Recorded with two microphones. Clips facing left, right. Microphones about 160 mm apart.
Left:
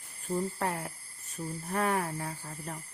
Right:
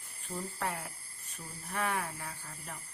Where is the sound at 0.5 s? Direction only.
40° left (ahead or behind).